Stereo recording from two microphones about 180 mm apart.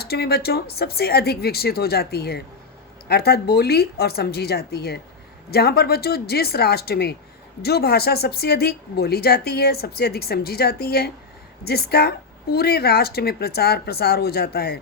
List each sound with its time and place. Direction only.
0.0 s speech: 60° left (ahead or behind)